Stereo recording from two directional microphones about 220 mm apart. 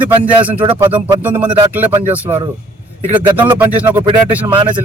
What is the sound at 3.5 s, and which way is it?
Speech, 10° right (ahead or behind).